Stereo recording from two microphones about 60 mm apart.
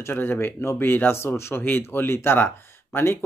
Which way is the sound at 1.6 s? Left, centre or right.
Left.